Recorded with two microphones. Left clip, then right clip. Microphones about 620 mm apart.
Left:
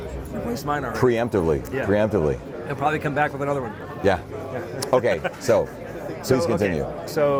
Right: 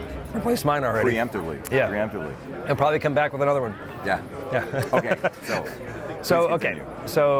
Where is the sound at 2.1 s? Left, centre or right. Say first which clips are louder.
Left 10 dB; left.